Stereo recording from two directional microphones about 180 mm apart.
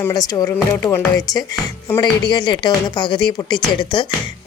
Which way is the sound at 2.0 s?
25° left (ahead or behind).